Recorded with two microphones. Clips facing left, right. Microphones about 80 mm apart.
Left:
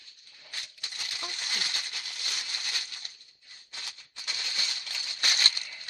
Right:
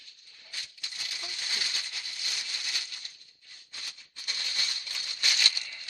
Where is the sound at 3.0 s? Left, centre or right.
Left.